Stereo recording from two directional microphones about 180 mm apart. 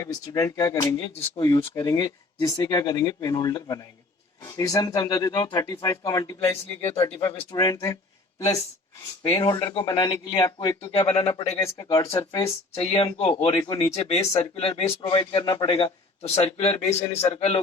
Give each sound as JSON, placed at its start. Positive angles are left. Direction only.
{"t": 0.0, "sound": "speech", "side_deg": 20}
{"t": 9.3, "sound": "a man's voice", "side_deg": 20}
{"t": 11.5, "sound": "a man's voice", "side_deg": 20}